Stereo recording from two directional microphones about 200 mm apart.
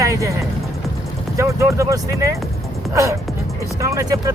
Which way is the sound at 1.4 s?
15° right (ahead or behind).